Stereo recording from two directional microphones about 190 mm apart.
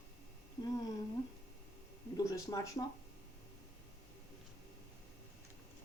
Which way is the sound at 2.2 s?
15° left (ahead or behind).